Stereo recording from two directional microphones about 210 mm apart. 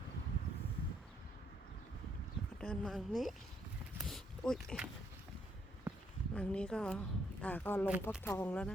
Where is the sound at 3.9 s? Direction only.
Centre (ahead or behind).